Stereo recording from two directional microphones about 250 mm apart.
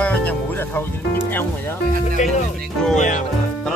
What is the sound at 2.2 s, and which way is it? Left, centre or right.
Speech, left.